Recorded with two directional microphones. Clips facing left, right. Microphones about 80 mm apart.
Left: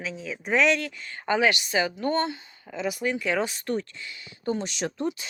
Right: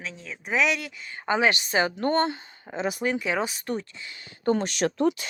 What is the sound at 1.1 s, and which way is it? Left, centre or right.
Speech, right.